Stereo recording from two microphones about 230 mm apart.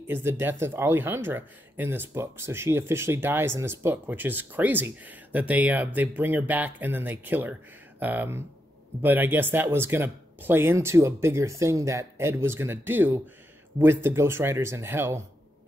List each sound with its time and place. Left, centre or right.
0.0 s speech: centre